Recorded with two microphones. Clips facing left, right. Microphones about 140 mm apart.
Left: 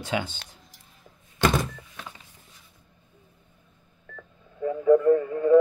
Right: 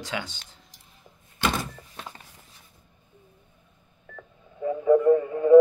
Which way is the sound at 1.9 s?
35° right (ahead or behind).